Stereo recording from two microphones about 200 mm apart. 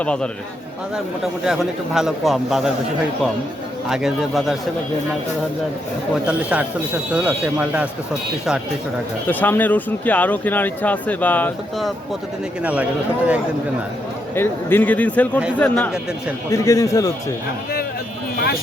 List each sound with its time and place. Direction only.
0.0 s a man's voice: 5° left (ahead or behind)
3.8 s a man's voice: centre (ahead or behind)
6.2 s speech: 5° right (ahead or behind)
9.2 s speech: 10° left (ahead or behind)
12.6 s speech: 5° right (ahead or behind)
14.3 s speech: 10° left (ahead or behind)
18.3 s speech: 50° left (ahead or behind)